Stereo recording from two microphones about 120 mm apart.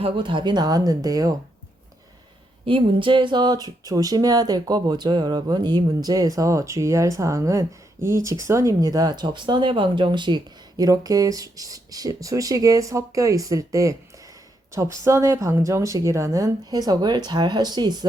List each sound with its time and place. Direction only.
0.0 s speech: 45° right (ahead or behind)
2.6 s speech: 45° right (ahead or behind)